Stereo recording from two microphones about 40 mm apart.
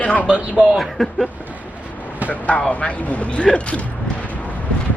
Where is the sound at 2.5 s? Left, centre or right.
Left.